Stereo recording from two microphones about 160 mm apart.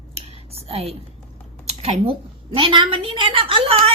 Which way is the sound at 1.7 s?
40° right (ahead or behind).